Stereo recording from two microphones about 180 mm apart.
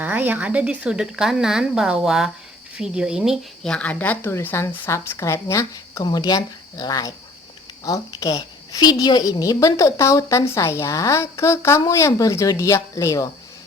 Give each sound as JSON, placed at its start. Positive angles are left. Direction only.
{"t": 0.0, "sound": "a woman's voice", "side_deg": -10}